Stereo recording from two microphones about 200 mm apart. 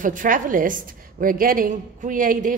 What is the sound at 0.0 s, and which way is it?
A woman's voice, 40° right (ahead or behind).